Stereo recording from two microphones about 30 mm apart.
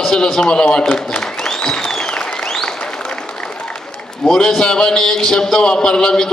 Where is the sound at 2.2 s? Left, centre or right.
Left.